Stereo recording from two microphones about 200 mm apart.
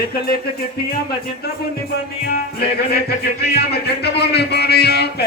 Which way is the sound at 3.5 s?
55° left (ahead or behind).